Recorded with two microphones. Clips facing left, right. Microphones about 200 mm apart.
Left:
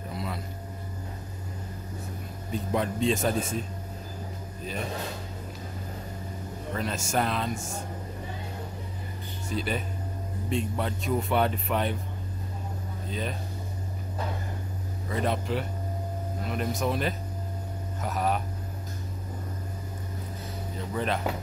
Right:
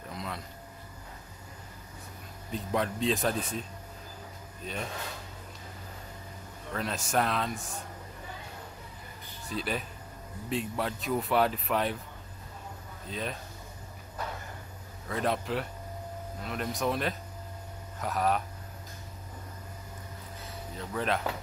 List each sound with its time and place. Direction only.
0.1 s a sound: 5° left (ahead or behind)
2.5 s speech: centre (ahead or behind)
6.7 s speech: centre (ahead or behind)
7.5 s speech: 45° left (ahead or behind)
9.5 s speech: centre (ahead or behind)
13.1 s speech: centre (ahead or behind)
15.0 s speech: centre (ahead or behind)
20.7 s speech: centre (ahead or behind)